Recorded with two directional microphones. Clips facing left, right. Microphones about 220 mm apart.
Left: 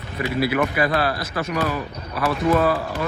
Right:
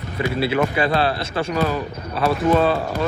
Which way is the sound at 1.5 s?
75° left (ahead or behind).